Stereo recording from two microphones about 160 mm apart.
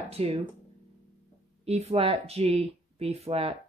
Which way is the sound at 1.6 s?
40° right (ahead or behind).